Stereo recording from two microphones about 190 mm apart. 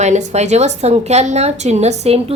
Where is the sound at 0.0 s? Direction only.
40° right (ahead or behind).